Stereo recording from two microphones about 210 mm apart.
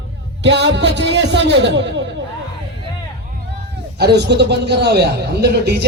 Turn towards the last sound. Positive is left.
turn(degrees=-50)  # may be behind; listen again after turning